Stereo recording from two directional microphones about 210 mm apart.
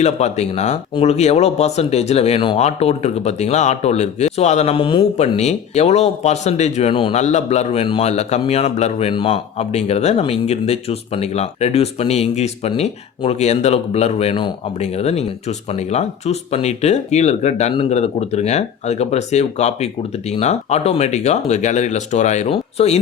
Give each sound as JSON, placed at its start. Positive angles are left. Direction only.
{"t": 0.0, "sound": "speech", "side_deg": 30}